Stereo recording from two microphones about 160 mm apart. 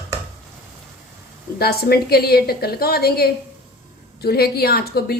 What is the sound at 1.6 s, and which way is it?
A woman's voice, 75° left (ahead or behind).